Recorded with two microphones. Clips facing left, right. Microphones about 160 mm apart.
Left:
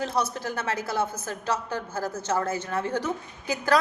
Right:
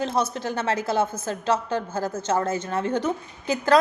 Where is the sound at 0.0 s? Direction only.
25° right (ahead or behind).